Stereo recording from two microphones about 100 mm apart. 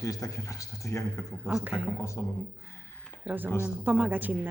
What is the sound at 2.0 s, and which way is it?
Speech, 30° left (ahead or behind).